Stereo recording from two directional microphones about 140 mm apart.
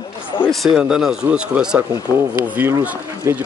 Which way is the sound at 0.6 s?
5° right (ahead or behind).